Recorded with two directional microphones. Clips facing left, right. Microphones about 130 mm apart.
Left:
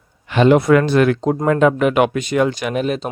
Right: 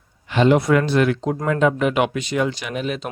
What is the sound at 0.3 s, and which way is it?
Speech, 60° left (ahead or behind).